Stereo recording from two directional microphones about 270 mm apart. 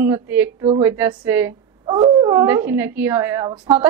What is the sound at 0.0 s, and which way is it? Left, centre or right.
A woman's voice, centre.